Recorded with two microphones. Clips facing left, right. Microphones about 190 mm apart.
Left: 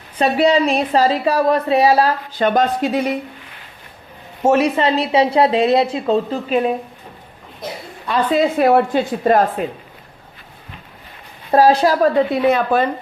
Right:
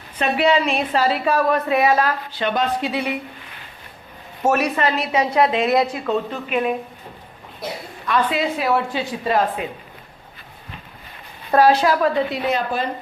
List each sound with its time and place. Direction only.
0.2 s a woman's voice: 35° left (ahead or behind)
4.4 s speech: 25° left (ahead or behind)
8.0 s a woman's voice: 30° left (ahead or behind)
8.4 s a woman's voice: 50° left (ahead or behind)
11.5 s a woman's voice: 35° left (ahead or behind); by 12.9 s 55° left (ahead or behind)